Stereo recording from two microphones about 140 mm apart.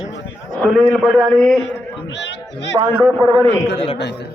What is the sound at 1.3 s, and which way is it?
Speech, centre (ahead or behind).